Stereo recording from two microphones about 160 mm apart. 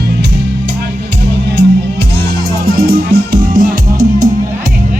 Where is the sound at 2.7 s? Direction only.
70° right (ahead or behind); by 4.3 s 55° right (ahead or behind).